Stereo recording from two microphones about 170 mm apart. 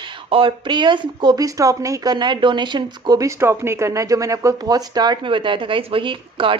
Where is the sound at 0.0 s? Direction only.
30° right (ahead or behind).